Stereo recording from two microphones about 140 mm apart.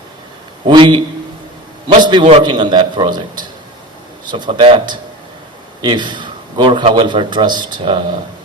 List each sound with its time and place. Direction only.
0.7 s a man's voice: 35° right (ahead or behind)